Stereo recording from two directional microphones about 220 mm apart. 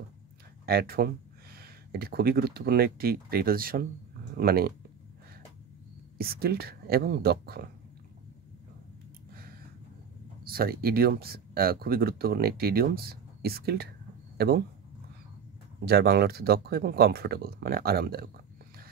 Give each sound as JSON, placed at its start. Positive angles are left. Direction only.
{"t": 0.7, "sound": "speech", "side_deg": -45}
{"t": 6.1, "sound": "speech", "side_deg": -45}
{"t": 10.5, "sound": "speech", "side_deg": -45}
{"t": 15.8, "sound": "speech", "side_deg": -45}